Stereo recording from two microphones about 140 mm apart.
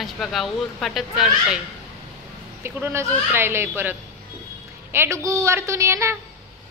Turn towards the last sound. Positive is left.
turn(degrees=-20)  # may be behind; listen again after turning